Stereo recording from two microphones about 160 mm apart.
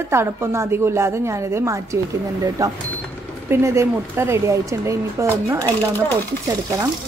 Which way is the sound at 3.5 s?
15° right (ahead or behind).